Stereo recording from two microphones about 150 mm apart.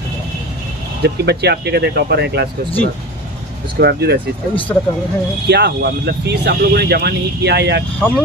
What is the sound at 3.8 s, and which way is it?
Speech, 90° right.